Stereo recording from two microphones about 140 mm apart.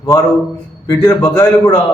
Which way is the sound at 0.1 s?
20° left (ahead or behind).